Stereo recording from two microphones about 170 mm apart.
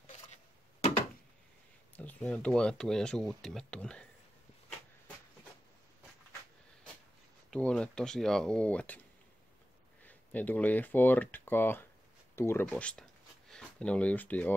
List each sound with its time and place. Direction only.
0.0 s a sound: 40° left (ahead or behind)
2.0 s speech: 10° left (ahead or behind)
7.5 s speech: 5° left (ahead or behind)
10.0 s speech: 10° left (ahead or behind)